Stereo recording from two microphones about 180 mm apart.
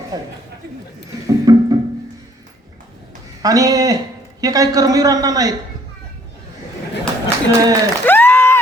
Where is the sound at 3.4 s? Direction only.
20° right (ahead or behind).